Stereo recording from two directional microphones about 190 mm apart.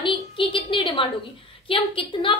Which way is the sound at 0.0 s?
25° left (ahead or behind).